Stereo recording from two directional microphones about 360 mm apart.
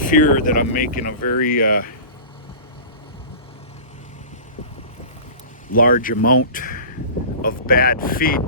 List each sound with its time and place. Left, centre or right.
0.0 s speech: left
5.7 s speech: left